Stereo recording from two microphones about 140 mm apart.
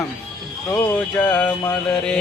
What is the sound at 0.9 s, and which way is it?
Speech, 10° left (ahead or behind).